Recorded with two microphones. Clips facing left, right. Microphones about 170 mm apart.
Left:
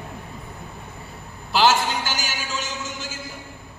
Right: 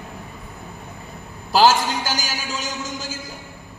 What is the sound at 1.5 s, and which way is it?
A man's voice, 40° right (ahead or behind).